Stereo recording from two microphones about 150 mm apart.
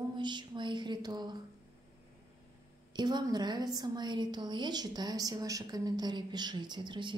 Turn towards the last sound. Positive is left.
turn(degrees=-30)  # may be behind; listen again after turning